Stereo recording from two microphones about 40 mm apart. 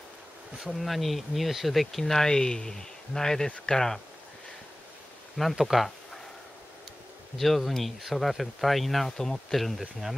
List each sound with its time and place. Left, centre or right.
0.7 s speech: centre
5.6 s speech: centre
7.3 s speech: centre